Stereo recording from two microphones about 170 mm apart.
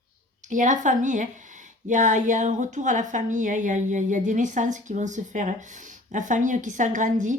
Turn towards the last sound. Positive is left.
turn(degrees=-50)  # may be behind; listen again after turning